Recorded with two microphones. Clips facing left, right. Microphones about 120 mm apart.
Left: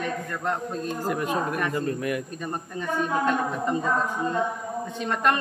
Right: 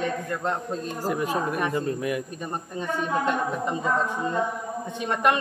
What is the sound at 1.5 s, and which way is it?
Speech, 20° right (ahead or behind).